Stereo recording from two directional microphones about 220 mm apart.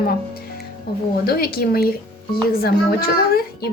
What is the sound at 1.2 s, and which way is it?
A child's voice, 45° left (ahead or behind).